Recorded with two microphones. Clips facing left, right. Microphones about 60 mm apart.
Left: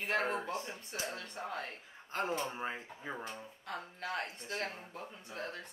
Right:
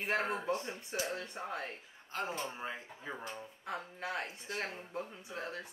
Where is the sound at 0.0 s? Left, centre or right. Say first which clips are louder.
Even; centre.